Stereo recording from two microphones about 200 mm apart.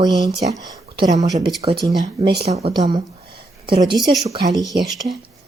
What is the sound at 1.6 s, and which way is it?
A woman's voice, 30° right (ahead or behind).